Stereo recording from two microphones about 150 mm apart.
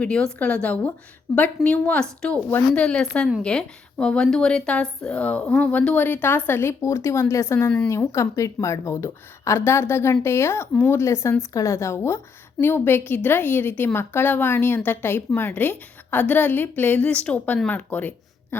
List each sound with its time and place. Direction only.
0.0 s a woman's voice: 5° left (ahead or behind)